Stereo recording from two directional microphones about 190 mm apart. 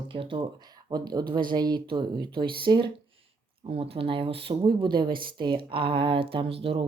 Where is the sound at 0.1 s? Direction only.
25° right (ahead or behind).